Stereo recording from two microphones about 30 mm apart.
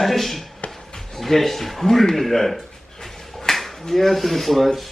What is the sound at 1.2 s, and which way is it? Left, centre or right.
Speech, centre.